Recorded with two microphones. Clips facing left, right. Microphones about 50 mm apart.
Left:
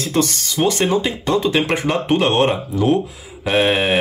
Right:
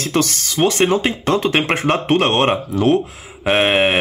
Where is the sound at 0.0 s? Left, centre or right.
Right.